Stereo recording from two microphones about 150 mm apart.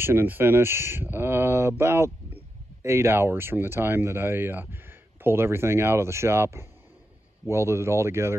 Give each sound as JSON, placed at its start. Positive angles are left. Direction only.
{"t": 0.0, "sound": "speech", "side_deg": -15}